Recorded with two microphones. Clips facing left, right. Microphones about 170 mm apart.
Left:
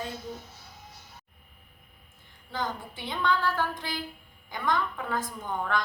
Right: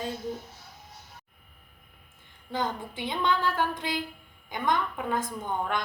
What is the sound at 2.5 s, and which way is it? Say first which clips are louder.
A woman's voice: right 3 dB; 20° right (ahead or behind).